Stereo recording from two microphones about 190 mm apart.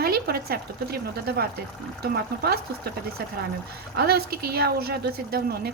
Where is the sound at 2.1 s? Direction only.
55° right (ahead or behind).